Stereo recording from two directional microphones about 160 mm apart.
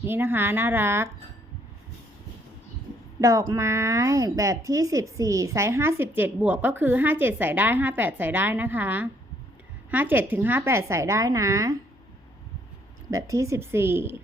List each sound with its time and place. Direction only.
0.0 s a woman's voice: 15° right (ahead or behind)
3.2 s a woman's voice: 20° right (ahead or behind)
13.1 s a woman's voice: 20° right (ahead or behind)